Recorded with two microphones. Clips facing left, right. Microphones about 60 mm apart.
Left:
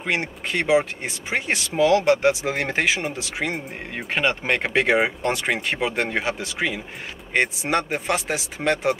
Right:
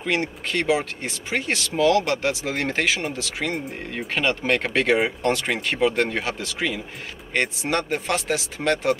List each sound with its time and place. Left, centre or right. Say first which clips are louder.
0.0 s speech: right 1 dB; left